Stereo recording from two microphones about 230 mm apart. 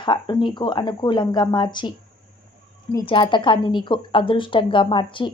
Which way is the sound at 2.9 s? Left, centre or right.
Left.